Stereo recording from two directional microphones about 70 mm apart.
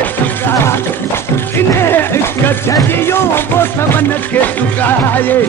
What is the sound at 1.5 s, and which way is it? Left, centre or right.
Speech, left.